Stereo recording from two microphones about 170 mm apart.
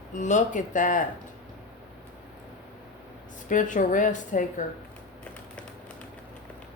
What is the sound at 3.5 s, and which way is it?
Speech, 50° left (ahead or behind).